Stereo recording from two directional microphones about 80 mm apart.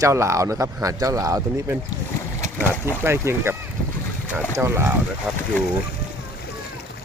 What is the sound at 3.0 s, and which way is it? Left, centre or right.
Speech, right.